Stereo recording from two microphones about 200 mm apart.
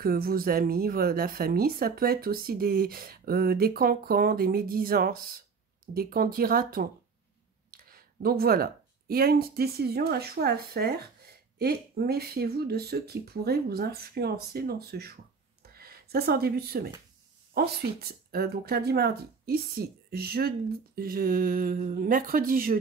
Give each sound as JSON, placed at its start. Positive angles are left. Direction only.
{"t": 0.0, "sound": "speech", "side_deg": -45}